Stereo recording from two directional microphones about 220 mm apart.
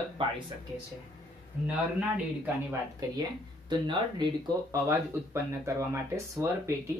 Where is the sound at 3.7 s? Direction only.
20° right (ahead or behind).